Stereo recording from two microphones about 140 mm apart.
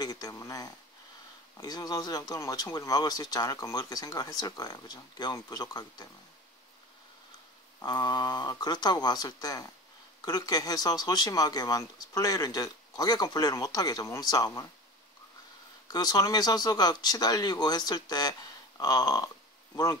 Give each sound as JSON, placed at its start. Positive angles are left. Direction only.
{"t": 0.0, "sound": "speech", "side_deg": 25}
{"t": 7.8, "sound": "speech", "side_deg": 30}
{"t": 15.9, "sound": "speech", "side_deg": 30}